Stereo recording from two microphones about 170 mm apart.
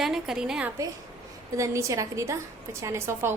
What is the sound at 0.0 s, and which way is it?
Speech, centre (ahead or behind).